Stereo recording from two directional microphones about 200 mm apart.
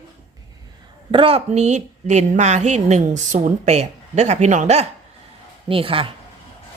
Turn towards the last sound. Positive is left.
turn(degrees=-25)  # may be behind; listen again after turning